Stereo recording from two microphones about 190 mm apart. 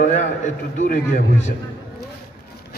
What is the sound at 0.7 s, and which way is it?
Speech, 40° left (ahead or behind).